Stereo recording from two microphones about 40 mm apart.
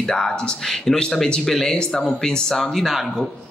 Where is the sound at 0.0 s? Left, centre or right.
Centre.